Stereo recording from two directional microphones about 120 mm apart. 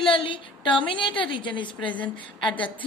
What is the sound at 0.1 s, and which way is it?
A woman's voice, 45° left (ahead or behind).